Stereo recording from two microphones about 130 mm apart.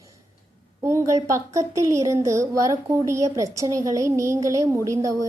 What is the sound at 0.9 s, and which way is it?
Speech, 20° right (ahead or behind).